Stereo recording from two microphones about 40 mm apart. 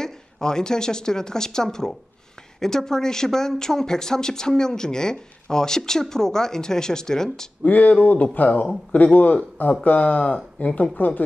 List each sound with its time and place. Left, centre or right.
0.0 s speech: centre
7.6 s a man's voice: left